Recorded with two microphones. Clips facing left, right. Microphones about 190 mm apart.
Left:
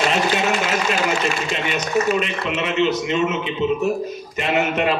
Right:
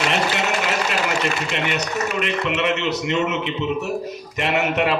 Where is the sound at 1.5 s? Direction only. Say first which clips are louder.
Even; 70° right (ahead or behind).